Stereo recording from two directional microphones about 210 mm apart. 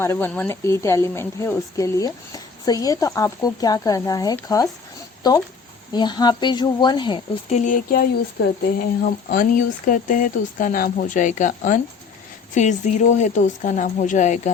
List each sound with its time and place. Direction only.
0.0 s a woman's voice: 10° left (ahead or behind)
7.5 s speech: 35° left (ahead or behind)